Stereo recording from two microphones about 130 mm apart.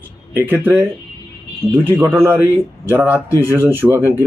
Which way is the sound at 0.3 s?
15° right (ahead or behind).